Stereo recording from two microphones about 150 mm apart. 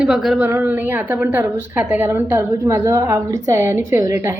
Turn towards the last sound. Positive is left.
turn(degrees=-20)  # may be behind; listen again after turning